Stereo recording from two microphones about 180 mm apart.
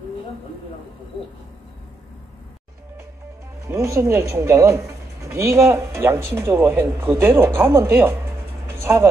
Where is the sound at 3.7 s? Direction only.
15° right (ahead or behind).